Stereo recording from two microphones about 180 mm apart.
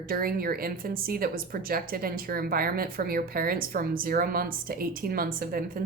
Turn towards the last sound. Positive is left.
turn(degrees=-55)  # may be behind; listen again after turning